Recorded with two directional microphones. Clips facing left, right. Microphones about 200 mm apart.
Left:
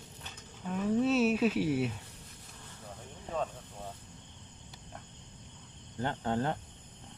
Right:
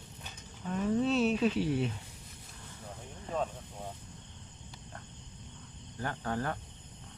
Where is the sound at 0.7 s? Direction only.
5° left (ahead or behind).